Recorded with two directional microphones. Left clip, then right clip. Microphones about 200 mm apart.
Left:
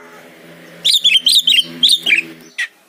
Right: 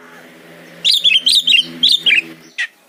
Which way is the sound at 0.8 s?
Centre (ahead or behind).